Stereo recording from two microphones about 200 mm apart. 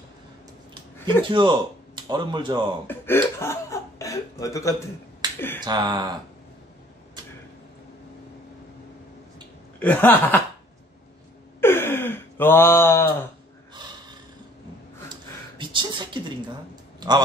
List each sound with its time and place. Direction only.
0.9 s a sound: 10° left (ahead or behind)
1.3 s speech: 25° right (ahead or behind)
2.9 s speech: 10° left (ahead or behind)
5.7 s speech: 20° right (ahead or behind)
9.8 s speech: 10° left (ahead or behind)
11.6 s wail: 10° left (ahead or behind)
15.5 s a sound: 25° right (ahead or behind)